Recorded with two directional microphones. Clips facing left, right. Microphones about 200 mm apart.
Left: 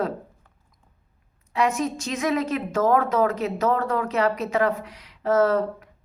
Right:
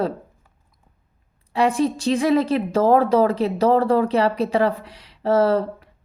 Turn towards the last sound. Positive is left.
turn(degrees=-30)  # may be behind; listen again after turning